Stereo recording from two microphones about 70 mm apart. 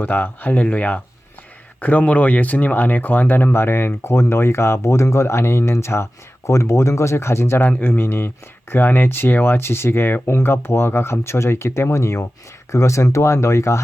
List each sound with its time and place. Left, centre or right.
0.0 s speech: left